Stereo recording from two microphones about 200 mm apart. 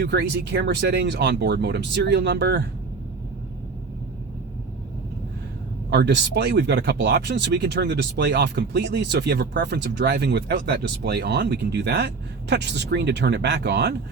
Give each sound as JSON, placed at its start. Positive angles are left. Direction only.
{"t": 0.0, "sound": "speech", "side_deg": -55}
{"t": 5.9, "sound": "speech", "side_deg": -60}